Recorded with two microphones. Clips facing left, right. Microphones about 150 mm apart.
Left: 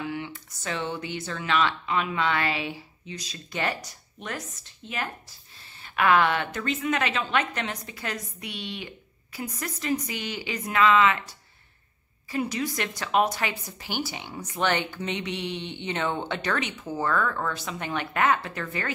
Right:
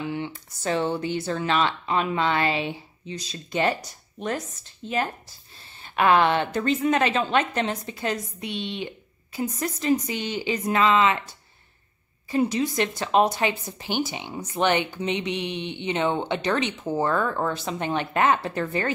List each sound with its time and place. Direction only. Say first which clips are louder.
0.0 s speech: right 3 dB; 25° right (ahead or behind)
4.8 s a woman's voice: right 7 dB; 35° right (ahead or behind)
12.3 s a woman's voice: right 5 dB; 25° right (ahead or behind)